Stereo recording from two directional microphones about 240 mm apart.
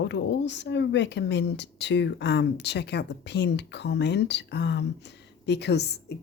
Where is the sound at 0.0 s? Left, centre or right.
Left.